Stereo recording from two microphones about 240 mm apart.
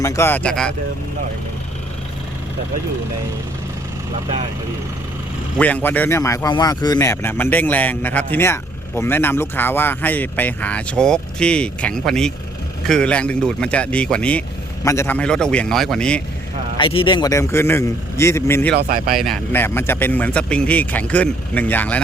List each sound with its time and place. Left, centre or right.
0.0 s speech: centre
5.5 s speech: centre
16.7 s speech: left
18.7 s speech: right
19.1 s speech: centre